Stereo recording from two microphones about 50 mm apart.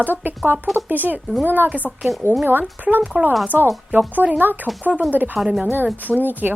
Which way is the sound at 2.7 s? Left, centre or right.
Right.